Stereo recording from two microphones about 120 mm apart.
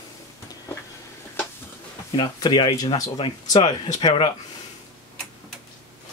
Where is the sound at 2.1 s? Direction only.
40° left (ahead or behind).